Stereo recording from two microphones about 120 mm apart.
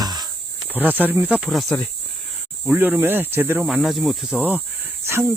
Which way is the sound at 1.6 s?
30° left (ahead or behind).